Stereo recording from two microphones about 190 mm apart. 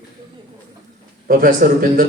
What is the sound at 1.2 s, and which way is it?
Speech, 45° right (ahead or behind).